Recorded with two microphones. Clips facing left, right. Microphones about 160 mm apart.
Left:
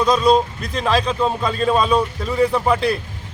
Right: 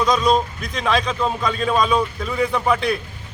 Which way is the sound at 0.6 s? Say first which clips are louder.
Left 2 dB; 30° left (ahead or behind).